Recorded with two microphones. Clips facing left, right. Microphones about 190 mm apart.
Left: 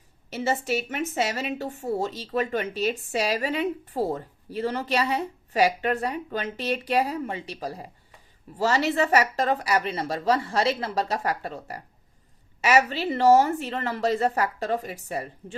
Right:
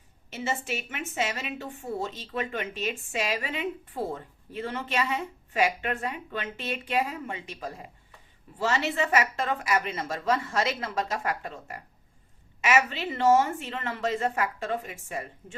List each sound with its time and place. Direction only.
0.3 s a woman's voice: 40° left (ahead or behind)